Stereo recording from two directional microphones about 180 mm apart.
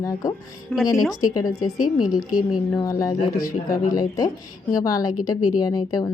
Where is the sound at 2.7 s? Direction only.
20° left (ahead or behind).